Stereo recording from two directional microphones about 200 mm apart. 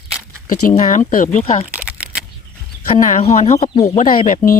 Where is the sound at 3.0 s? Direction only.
35° left (ahead or behind).